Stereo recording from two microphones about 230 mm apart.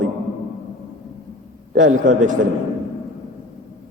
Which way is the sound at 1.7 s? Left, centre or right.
Right.